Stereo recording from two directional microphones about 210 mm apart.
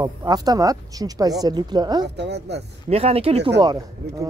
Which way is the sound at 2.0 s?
55° right (ahead or behind).